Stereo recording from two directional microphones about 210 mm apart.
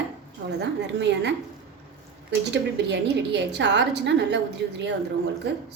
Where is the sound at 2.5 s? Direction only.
55° right (ahead or behind).